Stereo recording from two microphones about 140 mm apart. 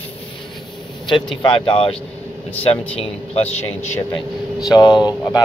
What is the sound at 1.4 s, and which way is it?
A man's voice, 35° left (ahead or behind).